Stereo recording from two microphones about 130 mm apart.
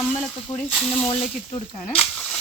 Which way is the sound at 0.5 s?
45° left (ahead or behind).